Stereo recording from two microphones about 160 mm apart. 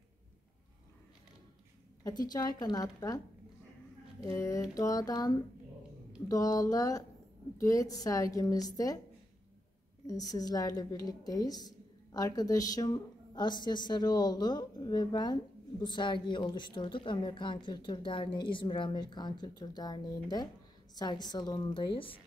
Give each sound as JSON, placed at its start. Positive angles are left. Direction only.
{"t": 2.0, "sound": "a woman's voice", "side_deg": 25}
{"t": 4.3, "sound": "a woman's voice", "side_deg": 20}
{"t": 10.0, "sound": "a woman's voice", "side_deg": 25}